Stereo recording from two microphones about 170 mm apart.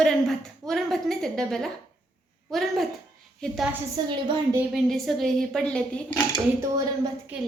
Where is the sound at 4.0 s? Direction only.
25° right (ahead or behind).